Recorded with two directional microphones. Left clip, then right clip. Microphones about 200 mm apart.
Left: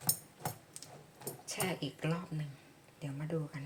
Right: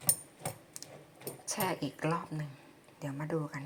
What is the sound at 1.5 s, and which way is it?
A woman's voice, 15° right (ahead or behind).